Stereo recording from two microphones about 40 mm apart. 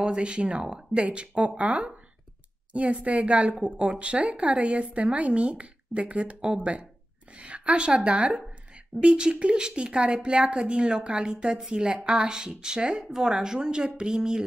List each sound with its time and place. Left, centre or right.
0.0 s a woman's voice: right